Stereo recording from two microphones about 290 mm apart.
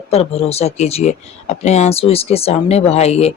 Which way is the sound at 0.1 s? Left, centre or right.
Left.